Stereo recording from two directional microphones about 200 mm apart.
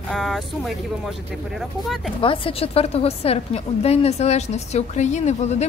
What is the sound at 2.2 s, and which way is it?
A woman's voice, 25° left (ahead or behind).